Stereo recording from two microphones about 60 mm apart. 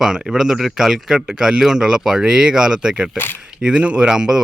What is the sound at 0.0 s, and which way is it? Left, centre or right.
Speech, centre.